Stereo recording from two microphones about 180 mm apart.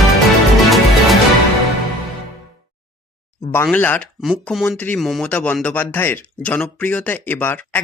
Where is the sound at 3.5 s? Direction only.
10° left (ahead or behind).